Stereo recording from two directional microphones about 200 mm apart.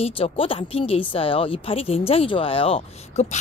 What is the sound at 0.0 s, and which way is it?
A woman's voice, 30° left (ahead or behind).